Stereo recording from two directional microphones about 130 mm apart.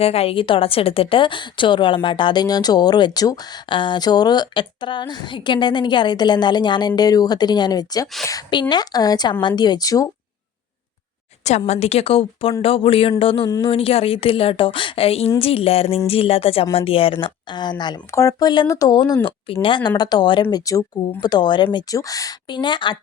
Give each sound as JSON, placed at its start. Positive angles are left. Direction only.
{"t": 0.0, "sound": "a woman's voice", "side_deg": 50}
{"t": 11.4, "sound": "a woman's voice", "side_deg": 60}
{"t": 18.1, "sound": "a woman's voice", "side_deg": 25}